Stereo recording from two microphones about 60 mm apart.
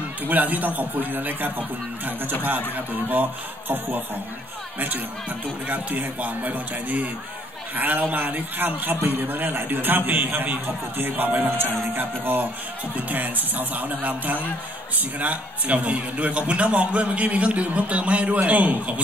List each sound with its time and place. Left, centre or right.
0.3 s a man's voice: right